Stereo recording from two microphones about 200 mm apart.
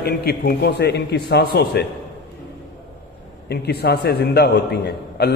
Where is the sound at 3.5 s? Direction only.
55° left (ahead or behind).